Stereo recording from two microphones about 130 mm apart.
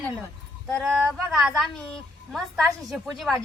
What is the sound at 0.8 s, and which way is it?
A woman's voice, 5° right (ahead or behind).